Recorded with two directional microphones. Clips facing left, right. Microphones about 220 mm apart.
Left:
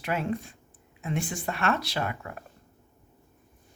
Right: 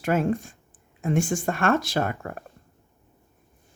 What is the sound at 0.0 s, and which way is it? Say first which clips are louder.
Speech: right 6 dB; 45° right (ahead or behind).